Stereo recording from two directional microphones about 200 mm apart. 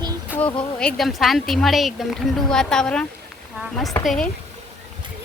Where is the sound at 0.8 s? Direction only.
Centre (ahead or behind).